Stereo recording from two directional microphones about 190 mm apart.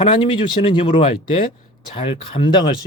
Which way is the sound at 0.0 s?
30° left (ahead or behind).